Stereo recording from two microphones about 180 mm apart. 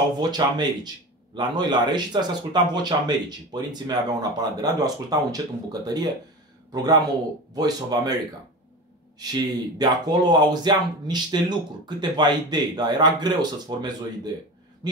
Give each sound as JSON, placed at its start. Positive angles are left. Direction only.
{"t": 0.2, "sound": "speech", "side_deg": -25}
{"t": 9.2, "sound": "speech", "side_deg": -20}